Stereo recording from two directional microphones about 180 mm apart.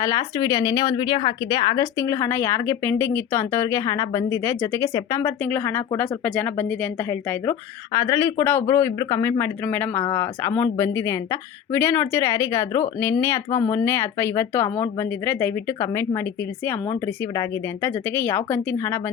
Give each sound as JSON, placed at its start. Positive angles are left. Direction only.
{"t": 0.0, "sound": "a woman's voice", "side_deg": 20}